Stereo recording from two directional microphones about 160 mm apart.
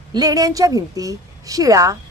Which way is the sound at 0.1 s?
25° right (ahead or behind).